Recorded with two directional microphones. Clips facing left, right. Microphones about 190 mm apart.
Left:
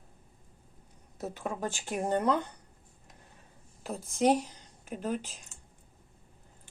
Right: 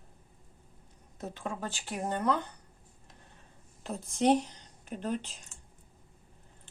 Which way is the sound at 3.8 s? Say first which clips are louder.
Even; 5° left (ahead or behind).